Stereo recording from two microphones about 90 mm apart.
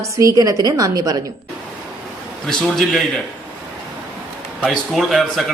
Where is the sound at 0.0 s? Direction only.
35° right (ahead or behind).